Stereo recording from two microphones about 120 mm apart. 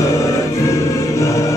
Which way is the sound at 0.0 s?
25° left (ahead or behind).